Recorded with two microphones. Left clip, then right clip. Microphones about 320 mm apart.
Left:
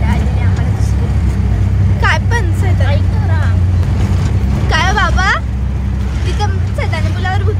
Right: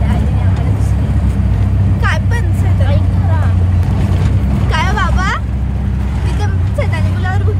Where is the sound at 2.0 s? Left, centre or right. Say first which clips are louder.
Left 5 dB; centre.